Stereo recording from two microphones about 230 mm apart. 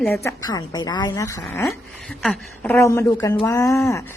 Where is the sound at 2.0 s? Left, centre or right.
Centre.